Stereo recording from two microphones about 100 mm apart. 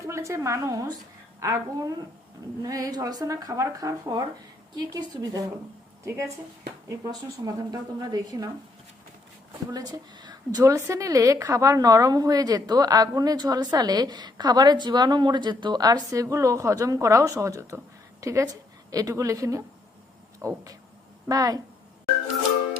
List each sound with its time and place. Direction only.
0.0 s a woman's voice: 30° right (ahead or behind)
7.4 s a woman's voice: 40° right (ahead or behind)
9.7 s speech: 40° right (ahead or behind)
10.6 s a woman's voice: 30° right (ahead or behind)
21.2 s a woman's voice: 40° right (ahead or behind)